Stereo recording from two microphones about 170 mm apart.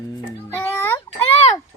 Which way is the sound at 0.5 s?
10° left (ahead or behind).